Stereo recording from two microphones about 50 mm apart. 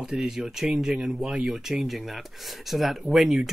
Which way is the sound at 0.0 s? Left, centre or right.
Centre.